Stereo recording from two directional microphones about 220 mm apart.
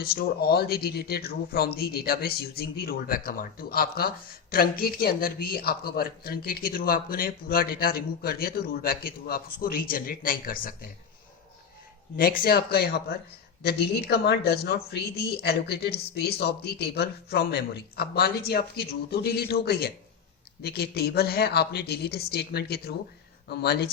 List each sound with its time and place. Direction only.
0.0 s a man's voice: 45° left (ahead or behind)
12.1 s a man's voice: 40° left (ahead or behind)